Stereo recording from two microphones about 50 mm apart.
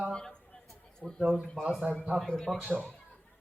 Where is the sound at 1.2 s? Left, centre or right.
Centre.